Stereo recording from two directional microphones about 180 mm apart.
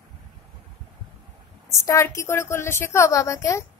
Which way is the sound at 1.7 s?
15° left (ahead or behind).